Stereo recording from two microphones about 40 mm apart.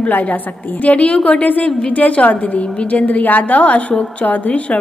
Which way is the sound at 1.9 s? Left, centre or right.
Left.